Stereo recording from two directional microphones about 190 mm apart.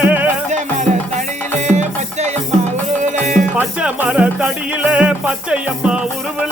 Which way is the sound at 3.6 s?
5° right (ahead or behind).